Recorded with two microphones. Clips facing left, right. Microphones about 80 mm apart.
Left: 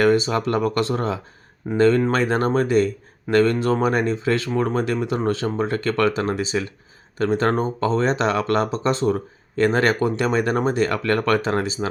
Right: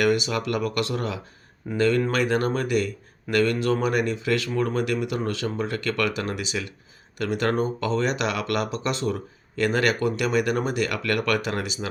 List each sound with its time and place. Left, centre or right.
0.0 s speech: left